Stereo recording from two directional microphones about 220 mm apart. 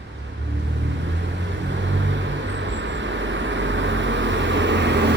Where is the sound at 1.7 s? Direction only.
55° right (ahead or behind).